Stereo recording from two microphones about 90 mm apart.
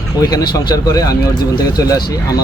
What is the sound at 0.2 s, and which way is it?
Speech, 45° left (ahead or behind).